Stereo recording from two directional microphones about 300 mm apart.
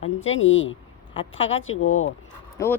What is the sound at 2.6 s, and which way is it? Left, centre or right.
Speech, centre.